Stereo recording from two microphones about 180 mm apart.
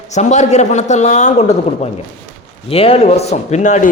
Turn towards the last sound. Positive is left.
turn(degrees=40)  # may be behind; listen again after turning